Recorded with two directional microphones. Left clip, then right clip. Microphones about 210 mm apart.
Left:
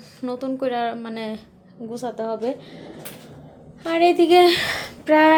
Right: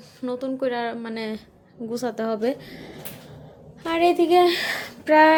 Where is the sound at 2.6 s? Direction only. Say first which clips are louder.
Left 1 dB; 10° right (ahead or behind).